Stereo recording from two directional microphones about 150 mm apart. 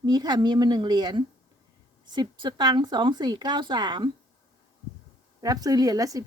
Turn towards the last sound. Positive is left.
turn(degrees=-25)  # may be behind; listen again after turning